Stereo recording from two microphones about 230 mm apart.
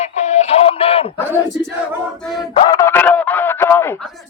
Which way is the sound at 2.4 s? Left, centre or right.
Centre.